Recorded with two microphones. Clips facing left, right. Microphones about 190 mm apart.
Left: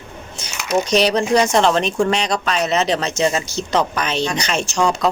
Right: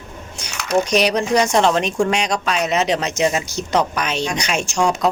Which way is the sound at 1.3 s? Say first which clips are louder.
Even; 10° right (ahead or behind).